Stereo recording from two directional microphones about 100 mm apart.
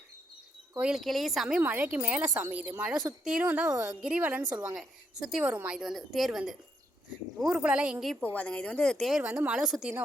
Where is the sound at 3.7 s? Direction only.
35° right (ahead or behind).